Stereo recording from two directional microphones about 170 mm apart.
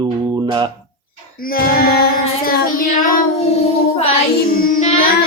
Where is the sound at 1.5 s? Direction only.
60° left (ahead or behind).